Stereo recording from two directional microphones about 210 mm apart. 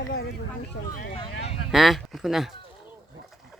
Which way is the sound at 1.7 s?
Centre (ahead or behind).